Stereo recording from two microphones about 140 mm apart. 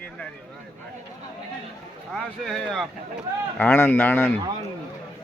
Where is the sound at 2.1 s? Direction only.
Centre (ahead or behind).